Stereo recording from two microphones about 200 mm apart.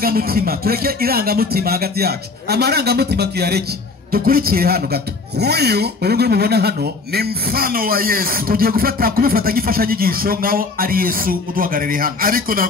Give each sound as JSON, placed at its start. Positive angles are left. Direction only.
{"t": 0.0, "sound": "speech", "side_deg": -50}